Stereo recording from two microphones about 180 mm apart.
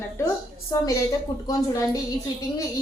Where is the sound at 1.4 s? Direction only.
20° left (ahead or behind).